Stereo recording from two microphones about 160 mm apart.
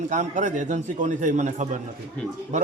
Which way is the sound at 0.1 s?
50° right (ahead or behind).